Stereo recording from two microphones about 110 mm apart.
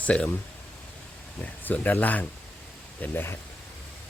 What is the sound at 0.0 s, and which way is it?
Speech, 10° left (ahead or behind).